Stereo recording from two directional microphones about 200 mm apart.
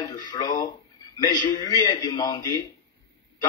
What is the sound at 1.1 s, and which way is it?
A man's voice, 20° left (ahead or behind).